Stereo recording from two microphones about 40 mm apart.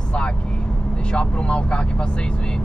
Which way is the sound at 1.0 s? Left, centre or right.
Left.